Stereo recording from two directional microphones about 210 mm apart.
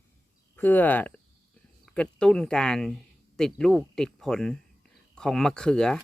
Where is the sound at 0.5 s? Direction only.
10° left (ahead or behind).